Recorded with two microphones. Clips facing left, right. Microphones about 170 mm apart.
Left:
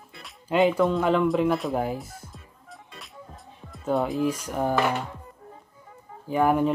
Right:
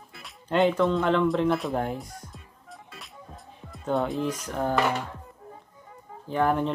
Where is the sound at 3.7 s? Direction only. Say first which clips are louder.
Left 2 dB; centre (ahead or behind).